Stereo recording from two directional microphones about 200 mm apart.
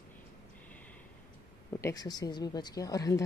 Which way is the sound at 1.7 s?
15° left (ahead or behind).